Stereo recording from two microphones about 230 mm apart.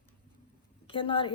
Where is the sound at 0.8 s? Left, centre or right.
Left.